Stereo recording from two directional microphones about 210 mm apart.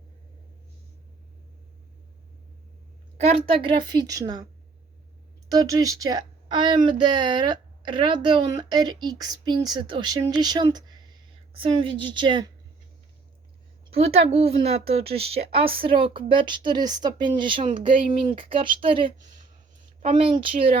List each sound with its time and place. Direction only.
3.2 s a woman's voice: 30° right (ahead or behind)
5.5 s a woman's voice: 15° right (ahead or behind)
13.9 s a woman's voice: 30° right (ahead or behind)